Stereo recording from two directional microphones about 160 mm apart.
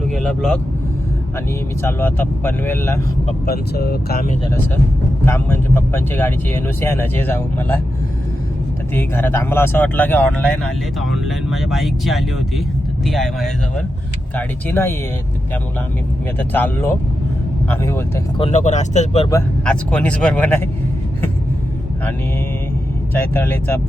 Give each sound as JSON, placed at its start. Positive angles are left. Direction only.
{"t": 0.0, "sound": "vehicle", "side_deg": 5}
{"t": 1.8, "sound": "speech", "side_deg": 15}
{"t": 3.4, "sound": "speech", "side_deg": 75}
{"t": 5.2, "sound": "speech", "side_deg": 15}
{"t": 9.0, "sound": "speech", "side_deg": 15}
{"t": 14.3, "sound": "speech", "side_deg": 15}
{"t": 16.5, "sound": "speech", "side_deg": 10}
{"t": 18.3, "sound": "speech", "side_deg": 40}
{"t": 19.6, "sound": "speech", "side_deg": 5}
{"t": 23.1, "sound": "speech", "side_deg": 15}